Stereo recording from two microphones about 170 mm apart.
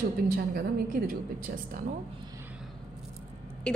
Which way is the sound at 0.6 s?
60° right (ahead or behind).